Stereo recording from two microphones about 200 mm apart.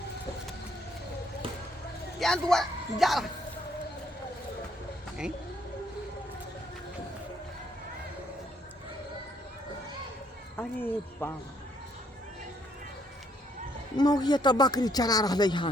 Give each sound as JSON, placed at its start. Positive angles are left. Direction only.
{"t": 2.1, "sound": "speech", "side_deg": 0}
{"t": 10.6, "sound": "speech", "side_deg": 10}
{"t": 13.9, "sound": "speech", "side_deg": 20}